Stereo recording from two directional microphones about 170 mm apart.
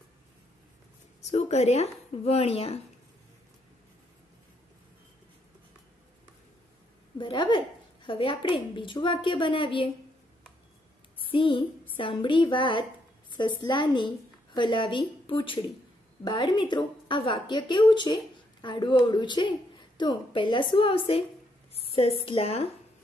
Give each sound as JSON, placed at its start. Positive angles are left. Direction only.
{"t": 1.2, "sound": "speech", "side_deg": 40}
{"t": 7.2, "sound": "a woman's voice", "side_deg": 30}
{"t": 11.2, "sound": "a woman's voice", "side_deg": 30}
{"t": 21.7, "sound": "a sound", "side_deg": 35}
{"t": 22.2, "sound": "speech", "side_deg": 35}